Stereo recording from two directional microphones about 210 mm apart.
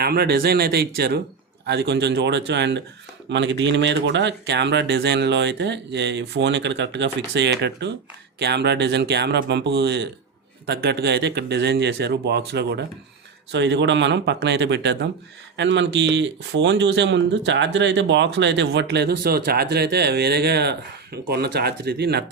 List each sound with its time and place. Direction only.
0.0 s speech: 50° right (ahead or behind)